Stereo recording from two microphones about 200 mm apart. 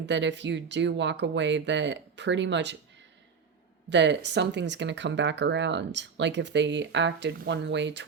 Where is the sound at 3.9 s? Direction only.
60° right (ahead or behind).